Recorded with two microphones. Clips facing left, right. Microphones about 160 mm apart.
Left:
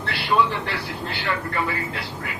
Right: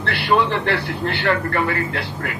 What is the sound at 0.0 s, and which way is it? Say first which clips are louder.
A man's voice: right 3 dB; 60° right (ahead or behind).